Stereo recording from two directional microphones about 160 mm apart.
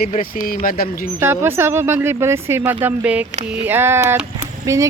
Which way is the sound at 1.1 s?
15° right (ahead or behind).